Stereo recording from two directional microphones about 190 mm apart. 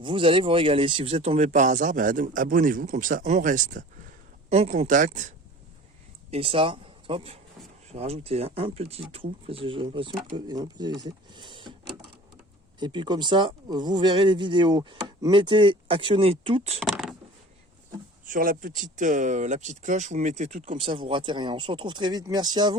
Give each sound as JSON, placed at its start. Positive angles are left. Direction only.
{"t": 0.0, "sound": "speech", "side_deg": -25}
{"t": 6.3, "sound": "speech", "side_deg": -30}
{"t": 12.8, "sound": "speech", "side_deg": -25}
{"t": 16.8, "sound": "a sound", "side_deg": 0}
{"t": 18.3, "sound": "speech", "side_deg": -45}